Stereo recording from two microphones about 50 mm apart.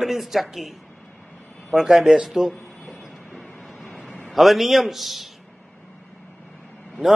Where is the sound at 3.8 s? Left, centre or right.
Centre.